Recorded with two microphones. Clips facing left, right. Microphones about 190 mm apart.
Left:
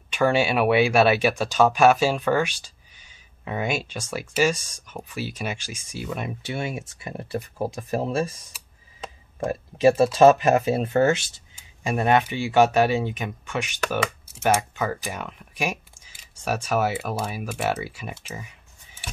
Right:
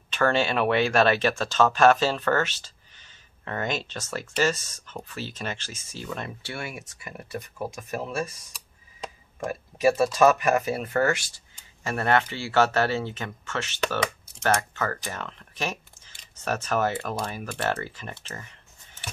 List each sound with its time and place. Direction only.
0.1 s speech: 10° left (ahead or behind); by 8.4 s 30° left (ahead or behind)
9.4 s speech: 25° left (ahead or behind); by 19.0 s 10° left (ahead or behind)